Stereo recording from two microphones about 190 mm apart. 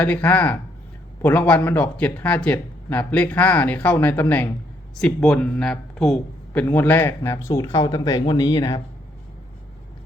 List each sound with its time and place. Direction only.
0.0 s speech: 5° left (ahead or behind)